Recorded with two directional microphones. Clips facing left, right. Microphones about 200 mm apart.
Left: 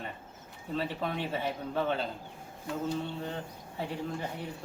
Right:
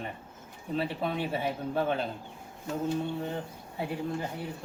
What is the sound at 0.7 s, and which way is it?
Speech, 10° right (ahead or behind).